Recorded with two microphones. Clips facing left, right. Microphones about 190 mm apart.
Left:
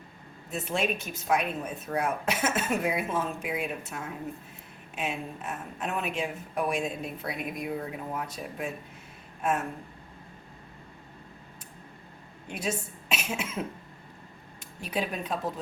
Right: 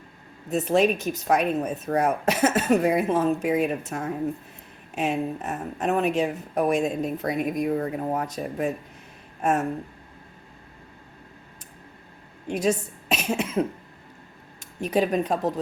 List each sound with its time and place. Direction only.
0.5 s speech: 40° right (ahead or behind)
12.5 s speech: 40° right (ahead or behind)
14.8 s speech: 45° right (ahead or behind)